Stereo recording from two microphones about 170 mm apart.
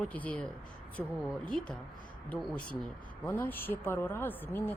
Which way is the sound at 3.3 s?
10° left (ahead or behind).